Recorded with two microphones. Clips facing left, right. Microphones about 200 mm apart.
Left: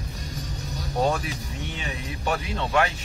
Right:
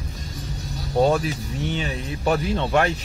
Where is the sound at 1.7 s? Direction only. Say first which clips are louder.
Right 6 dB; 35° right (ahead or behind).